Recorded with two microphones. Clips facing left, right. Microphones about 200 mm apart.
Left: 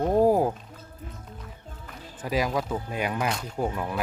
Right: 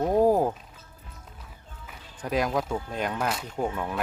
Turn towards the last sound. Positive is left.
turn(degrees=5)  # may be behind; listen again after turning